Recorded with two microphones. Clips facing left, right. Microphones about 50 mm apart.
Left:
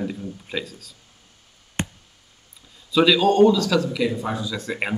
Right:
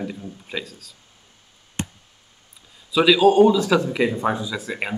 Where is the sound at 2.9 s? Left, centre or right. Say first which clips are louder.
Right 2 dB; centre; by 4.5 s right.